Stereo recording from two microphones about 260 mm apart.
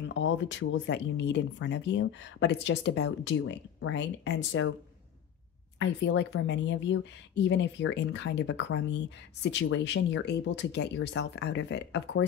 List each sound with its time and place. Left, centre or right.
0.1 s speech: left
5.8 s speech: left